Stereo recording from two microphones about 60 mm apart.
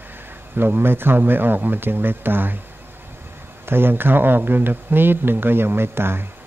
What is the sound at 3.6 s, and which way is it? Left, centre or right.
Speech, right.